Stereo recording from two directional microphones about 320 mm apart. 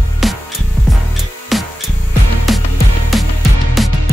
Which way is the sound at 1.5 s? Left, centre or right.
Centre.